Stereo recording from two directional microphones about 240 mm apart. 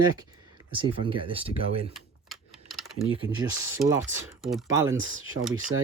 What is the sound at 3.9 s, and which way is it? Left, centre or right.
Speech, centre.